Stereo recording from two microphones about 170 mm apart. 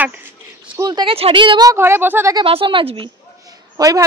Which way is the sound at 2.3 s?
30° right (ahead or behind).